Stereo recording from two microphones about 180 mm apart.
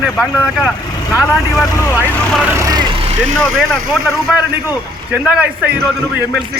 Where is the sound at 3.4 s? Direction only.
5° left (ahead or behind).